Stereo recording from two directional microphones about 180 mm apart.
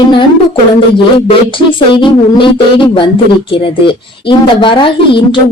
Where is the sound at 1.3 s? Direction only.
30° left (ahead or behind).